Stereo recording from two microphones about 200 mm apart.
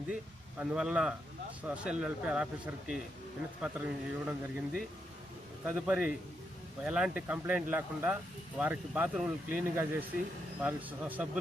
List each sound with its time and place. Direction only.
0.6 s speech: 5° right (ahead or behind)